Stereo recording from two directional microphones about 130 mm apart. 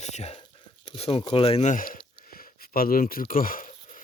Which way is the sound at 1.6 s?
90° left.